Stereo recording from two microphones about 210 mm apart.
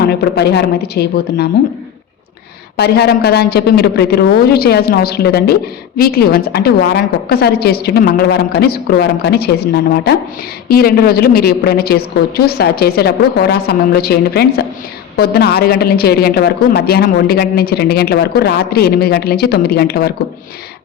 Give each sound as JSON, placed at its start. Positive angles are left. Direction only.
{"t": 0.0, "sound": "a woman's voice", "side_deg": 50}
{"t": 2.7, "sound": "a woman's voice", "side_deg": 50}